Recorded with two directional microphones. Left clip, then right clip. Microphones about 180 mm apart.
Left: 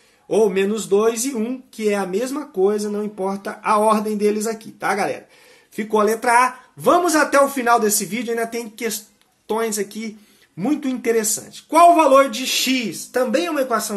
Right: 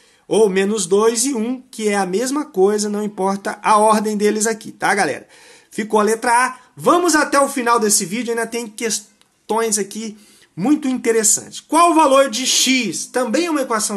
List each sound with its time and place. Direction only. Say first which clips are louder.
0.3 s speech: right 2 dB; 30° right (ahead or behind)